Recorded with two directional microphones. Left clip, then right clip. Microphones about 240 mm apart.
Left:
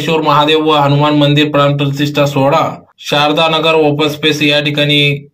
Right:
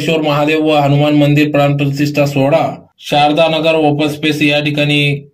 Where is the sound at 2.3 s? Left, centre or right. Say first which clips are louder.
Left 1 dB; left.